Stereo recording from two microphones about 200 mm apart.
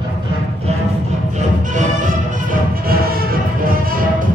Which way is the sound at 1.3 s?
40° right (ahead or behind).